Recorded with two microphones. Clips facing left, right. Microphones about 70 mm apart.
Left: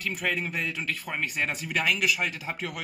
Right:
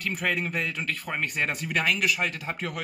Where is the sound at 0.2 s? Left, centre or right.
Centre.